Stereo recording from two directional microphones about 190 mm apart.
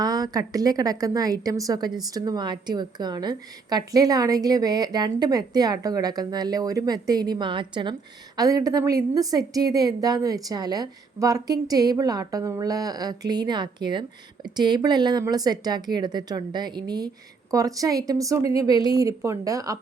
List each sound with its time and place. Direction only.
0.0 s a woman's voice: 20° right (ahead or behind)